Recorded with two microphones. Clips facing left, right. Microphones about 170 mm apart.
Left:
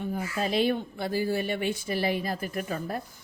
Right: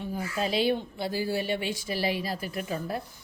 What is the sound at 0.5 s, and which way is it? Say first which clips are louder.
Speech: left 1 dB; 50° left (ahead or behind).